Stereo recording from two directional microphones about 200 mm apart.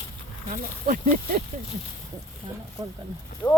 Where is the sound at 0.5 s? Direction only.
45° right (ahead or behind).